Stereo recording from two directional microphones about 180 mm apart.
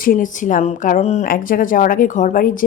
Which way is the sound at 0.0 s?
50° left (ahead or behind).